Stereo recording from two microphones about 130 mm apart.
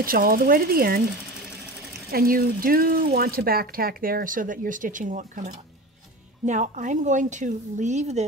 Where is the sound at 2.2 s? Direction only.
90° right.